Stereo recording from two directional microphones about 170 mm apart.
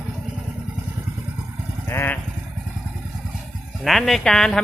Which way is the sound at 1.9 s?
15° left (ahead or behind).